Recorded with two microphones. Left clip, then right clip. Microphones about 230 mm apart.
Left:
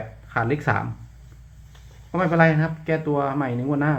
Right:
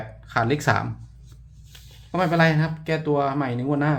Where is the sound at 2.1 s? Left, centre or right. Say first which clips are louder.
Left 1 dB; centre.